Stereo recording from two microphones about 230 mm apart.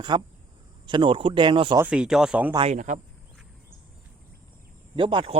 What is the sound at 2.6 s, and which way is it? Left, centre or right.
Speech, right.